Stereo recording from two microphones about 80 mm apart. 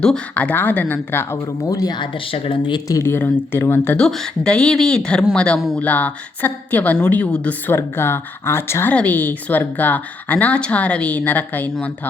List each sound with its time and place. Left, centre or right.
0.3 s a woman's voice: left
1.6 s speech: left
2.0 s speech: left
2.8 s speech: left
3.1 s a woman's voice: left
3.9 s a woman's voice: centre
7.7 s speech: left
8.9 s a woman's voice: centre